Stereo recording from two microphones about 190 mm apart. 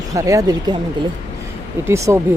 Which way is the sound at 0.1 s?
20° right (ahead or behind).